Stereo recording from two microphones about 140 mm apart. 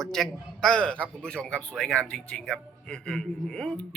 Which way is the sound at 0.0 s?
5° left (ahead or behind).